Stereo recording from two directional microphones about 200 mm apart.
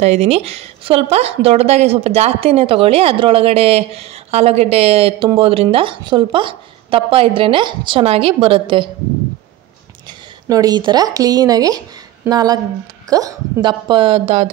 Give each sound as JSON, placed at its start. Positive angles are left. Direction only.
{"t": 0.0, "sound": "speech", "side_deg": -30}
{"t": 10.5, "sound": "speech", "side_deg": -20}